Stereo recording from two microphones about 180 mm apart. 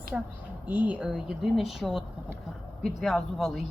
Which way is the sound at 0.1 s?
5° right (ahead or behind).